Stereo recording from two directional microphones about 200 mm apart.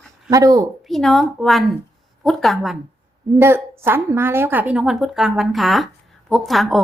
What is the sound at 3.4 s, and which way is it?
A woman's voice, 10° right (ahead or behind).